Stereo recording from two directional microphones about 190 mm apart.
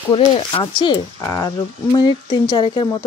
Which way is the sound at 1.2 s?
15° left (ahead or behind).